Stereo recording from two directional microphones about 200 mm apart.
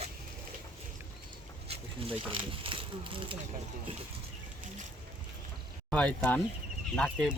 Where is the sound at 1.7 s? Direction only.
25° right (ahead or behind).